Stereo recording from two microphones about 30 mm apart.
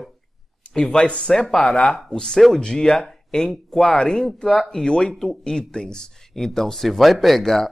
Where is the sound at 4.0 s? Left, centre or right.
Left.